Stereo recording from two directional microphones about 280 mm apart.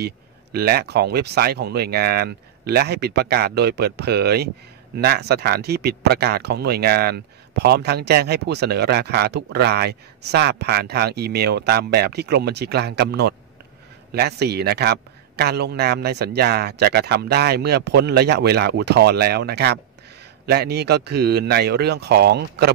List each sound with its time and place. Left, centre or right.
0.0 s speech: right